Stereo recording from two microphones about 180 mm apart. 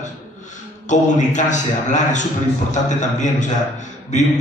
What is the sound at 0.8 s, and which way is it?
A man's voice, 40° left (ahead or behind).